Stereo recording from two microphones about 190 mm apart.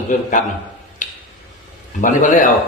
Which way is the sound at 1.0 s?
40° left (ahead or behind).